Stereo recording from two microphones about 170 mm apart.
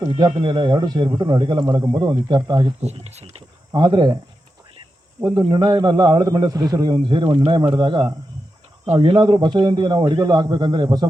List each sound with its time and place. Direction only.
0.1 s speech: 25° right (ahead or behind)
2.8 s speech: 40° right (ahead or behind)
3.7 s speech: 25° right (ahead or behind)
5.2 s speech: 25° right (ahead or behind)